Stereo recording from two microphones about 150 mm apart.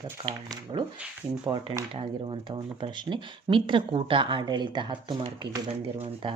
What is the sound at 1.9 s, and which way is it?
Speech, 35° right (ahead or behind).